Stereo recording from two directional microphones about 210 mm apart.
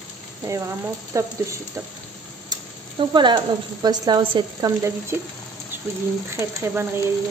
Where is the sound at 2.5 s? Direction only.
20° right (ahead or behind).